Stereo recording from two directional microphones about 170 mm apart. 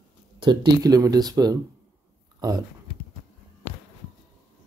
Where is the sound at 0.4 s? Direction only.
25° right (ahead or behind).